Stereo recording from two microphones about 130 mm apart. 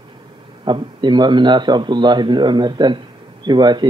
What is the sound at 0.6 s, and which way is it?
Speech, 35° right (ahead or behind).